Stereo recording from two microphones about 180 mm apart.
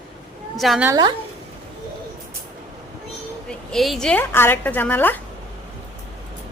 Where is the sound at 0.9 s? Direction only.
25° right (ahead or behind).